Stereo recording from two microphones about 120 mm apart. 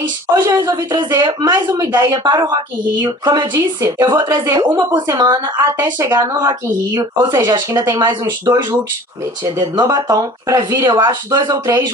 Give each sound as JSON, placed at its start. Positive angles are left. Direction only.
{"t": 0.3, "sound": "a woman's voice", "side_deg": -35}
{"t": 9.4, "sound": "a woman's voice", "side_deg": -35}